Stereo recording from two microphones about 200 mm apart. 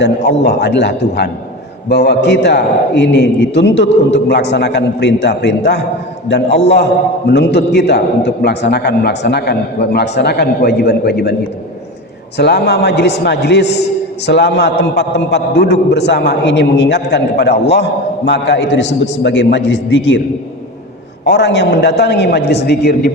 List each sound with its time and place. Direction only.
0.4 s a man's voice: 55° left (ahead or behind)
7.3 s a man's voice: 55° left (ahead or behind)
12.4 s a man's voice: 55° left (ahead or behind)
21.2 s a man's voice: 60° left (ahead or behind)